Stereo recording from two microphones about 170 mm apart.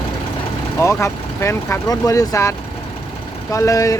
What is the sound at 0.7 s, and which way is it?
Speech, 15° left (ahead or behind).